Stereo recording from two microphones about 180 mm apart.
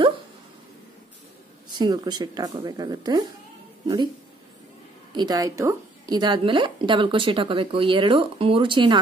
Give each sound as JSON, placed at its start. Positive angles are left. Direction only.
{"t": 1.8, "sound": "a woman's voice", "side_deg": -25}
{"t": 5.1, "sound": "a woman's voice", "side_deg": -25}